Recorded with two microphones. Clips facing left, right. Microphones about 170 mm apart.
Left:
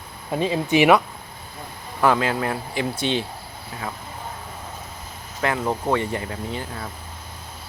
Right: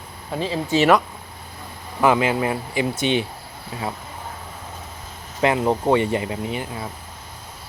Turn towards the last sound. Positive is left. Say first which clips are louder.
# right 3 dB
turn(degrees=-10)  # may be behind; listen again after turning